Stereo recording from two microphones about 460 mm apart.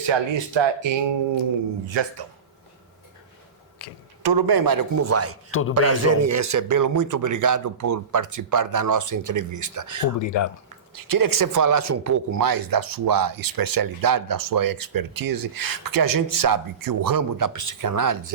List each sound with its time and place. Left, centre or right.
0.1 s speech: right
4.2 s speech: right
5.0 s speech: right
5.5 s a man's voice: left
5.7 s speech: right
10.2 s speech: left
10.9 s speech: right